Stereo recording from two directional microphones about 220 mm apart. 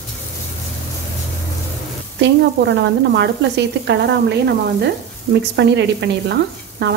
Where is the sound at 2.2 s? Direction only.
50° right (ahead or behind).